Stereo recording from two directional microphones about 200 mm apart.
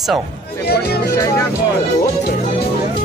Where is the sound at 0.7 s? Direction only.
50° left (ahead or behind).